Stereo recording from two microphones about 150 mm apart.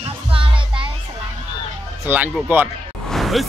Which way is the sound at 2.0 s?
10° right (ahead or behind).